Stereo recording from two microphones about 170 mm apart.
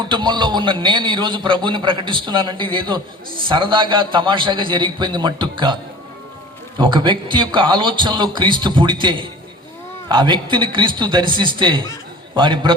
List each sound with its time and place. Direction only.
0.1 s a man's voice: 25° right (ahead or behind)
6.7 s a man's voice: 30° right (ahead or behind)